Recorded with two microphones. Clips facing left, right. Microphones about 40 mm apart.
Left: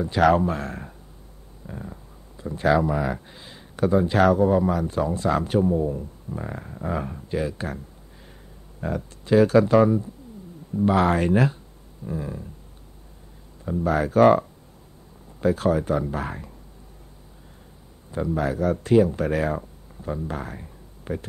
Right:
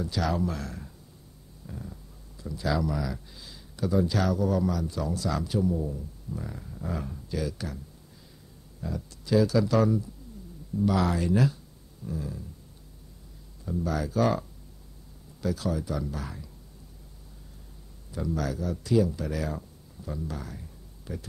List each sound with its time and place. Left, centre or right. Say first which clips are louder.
0.2 s speech: left 11 dB; left
8.8 s speech: left 7 dB; left
13.7 s speech: left 7 dB; left
15.4 s speech: left 9 dB; left
18.1 s speech: left 6 dB; left
18.6 s speech: left 7 dB; left